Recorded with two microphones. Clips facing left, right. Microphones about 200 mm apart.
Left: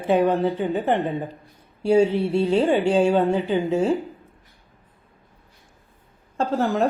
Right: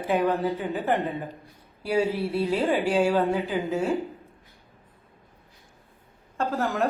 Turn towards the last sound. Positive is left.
turn(degrees=30)  # may be behind; listen again after turning